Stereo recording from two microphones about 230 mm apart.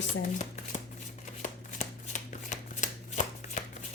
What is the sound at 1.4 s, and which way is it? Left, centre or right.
Shuffling cards, left.